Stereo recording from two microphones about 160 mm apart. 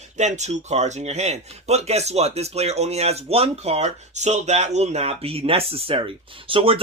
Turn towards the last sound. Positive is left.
turn(degrees=-35)  # may be behind; listen again after turning